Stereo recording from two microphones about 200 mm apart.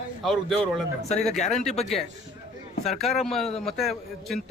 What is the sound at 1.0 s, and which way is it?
Speech, 35° left (ahead or behind).